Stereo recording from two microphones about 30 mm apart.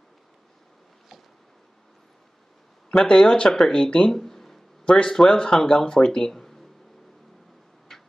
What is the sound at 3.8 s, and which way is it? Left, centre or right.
Speech, left.